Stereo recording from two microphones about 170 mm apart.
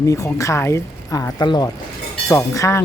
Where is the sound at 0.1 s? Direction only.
20° left (ahead or behind).